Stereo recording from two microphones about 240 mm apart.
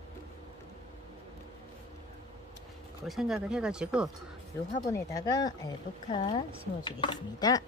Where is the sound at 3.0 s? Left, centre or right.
Centre.